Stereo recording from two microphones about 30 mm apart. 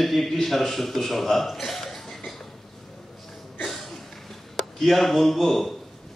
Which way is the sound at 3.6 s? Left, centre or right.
Centre.